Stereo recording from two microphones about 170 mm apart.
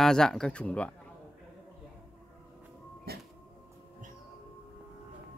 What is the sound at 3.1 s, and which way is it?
Train, 65° right (ahead or behind).